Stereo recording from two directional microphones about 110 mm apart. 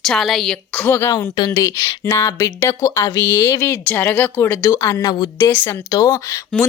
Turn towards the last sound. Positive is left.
turn(degrees=30)  # may be behind; listen again after turning